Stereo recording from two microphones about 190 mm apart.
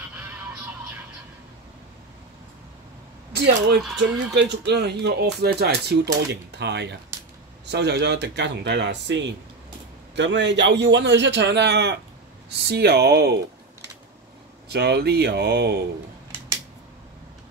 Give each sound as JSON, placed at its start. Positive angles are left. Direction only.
{"t": 3.3, "sound": "speech", "side_deg": -60}
{"t": 3.8, "sound": "speech", "side_deg": 0}
{"t": 4.3, "sound": "a man's voice", "side_deg": -60}
{"t": 14.7, "sound": "speech", "side_deg": -60}